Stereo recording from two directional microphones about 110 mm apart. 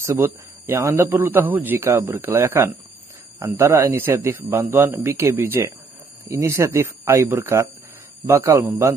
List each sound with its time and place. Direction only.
0.0 s a man's voice: 20° right (ahead or behind)